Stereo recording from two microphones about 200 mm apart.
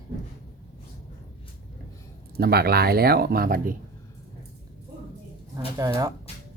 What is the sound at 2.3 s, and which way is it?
Speech, 50° right (ahead or behind).